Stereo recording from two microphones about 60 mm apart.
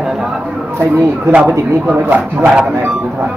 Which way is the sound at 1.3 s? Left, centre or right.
Right.